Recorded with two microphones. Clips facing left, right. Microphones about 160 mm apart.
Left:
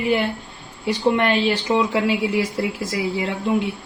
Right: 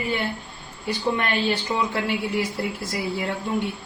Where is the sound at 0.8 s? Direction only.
90° left.